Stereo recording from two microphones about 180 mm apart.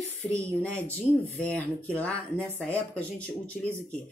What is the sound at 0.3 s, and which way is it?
A woman's voice, 5° left (ahead or behind).